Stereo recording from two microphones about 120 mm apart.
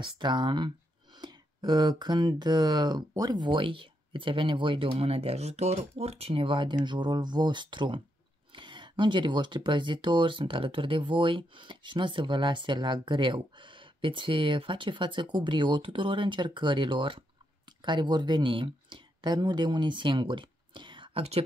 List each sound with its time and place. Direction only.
0.0 s speech: 40° right (ahead or behind)